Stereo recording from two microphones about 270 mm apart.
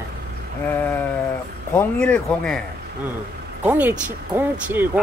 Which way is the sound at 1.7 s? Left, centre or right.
Centre.